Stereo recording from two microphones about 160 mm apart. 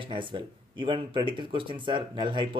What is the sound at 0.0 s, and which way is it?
Speech, 30° right (ahead or behind).